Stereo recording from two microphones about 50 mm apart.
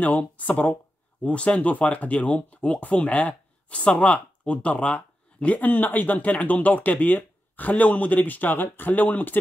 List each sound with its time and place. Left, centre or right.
0.0 s speech: left
5.7 s speech: left